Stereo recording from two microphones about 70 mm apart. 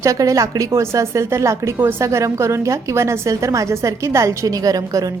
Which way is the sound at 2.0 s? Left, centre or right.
Right.